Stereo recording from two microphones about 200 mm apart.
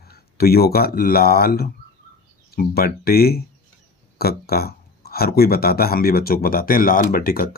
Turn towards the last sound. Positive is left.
turn(degrees=45)  # may be behind; listen again after turning